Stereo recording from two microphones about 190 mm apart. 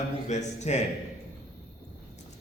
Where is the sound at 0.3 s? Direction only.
35° left (ahead or behind).